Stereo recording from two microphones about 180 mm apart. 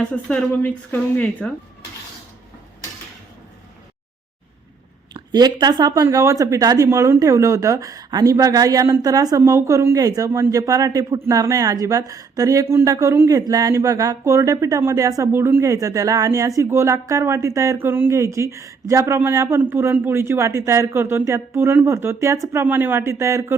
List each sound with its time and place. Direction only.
0.0 s speech: 5° left (ahead or behind)
5.1 s speech: 20° right (ahead or behind)